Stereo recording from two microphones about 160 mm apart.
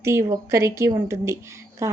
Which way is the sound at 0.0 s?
15° right (ahead or behind).